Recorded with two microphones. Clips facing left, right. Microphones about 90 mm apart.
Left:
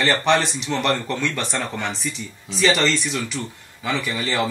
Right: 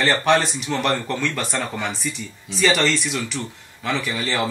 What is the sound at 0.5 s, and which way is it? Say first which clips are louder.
Speech: even; 5° right (ahead or behind).